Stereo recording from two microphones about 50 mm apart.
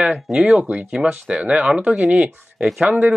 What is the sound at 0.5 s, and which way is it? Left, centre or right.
Speech, right.